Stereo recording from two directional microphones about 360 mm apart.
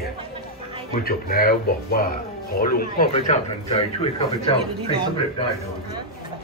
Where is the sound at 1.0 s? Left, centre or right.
Left.